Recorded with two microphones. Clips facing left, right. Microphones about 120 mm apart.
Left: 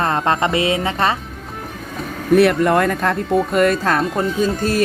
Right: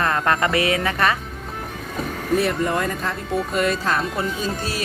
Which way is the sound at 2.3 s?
65° left (ahead or behind).